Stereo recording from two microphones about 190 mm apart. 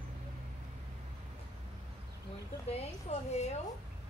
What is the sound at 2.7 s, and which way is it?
Speech, 35° left (ahead or behind).